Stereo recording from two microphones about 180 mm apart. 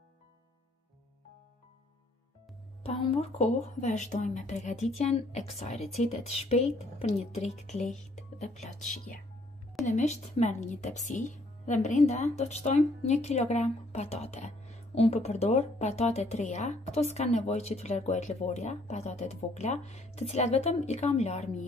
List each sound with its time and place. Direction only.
2.8 s speech: 35° left (ahead or behind)